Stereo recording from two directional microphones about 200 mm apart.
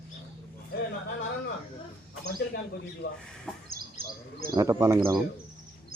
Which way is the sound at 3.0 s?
50° left (ahead or behind).